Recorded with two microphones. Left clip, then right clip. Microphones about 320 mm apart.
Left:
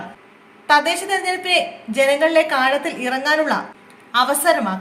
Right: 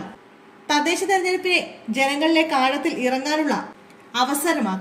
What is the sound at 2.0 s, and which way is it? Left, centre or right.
Speech, left.